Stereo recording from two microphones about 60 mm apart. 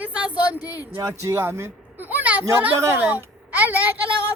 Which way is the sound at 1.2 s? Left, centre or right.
Right.